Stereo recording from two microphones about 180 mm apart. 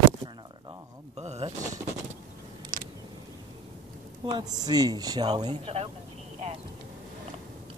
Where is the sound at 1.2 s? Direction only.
35° right (ahead or behind).